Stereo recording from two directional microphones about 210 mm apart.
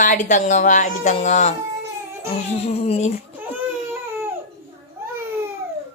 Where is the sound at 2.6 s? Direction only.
30° left (ahead or behind).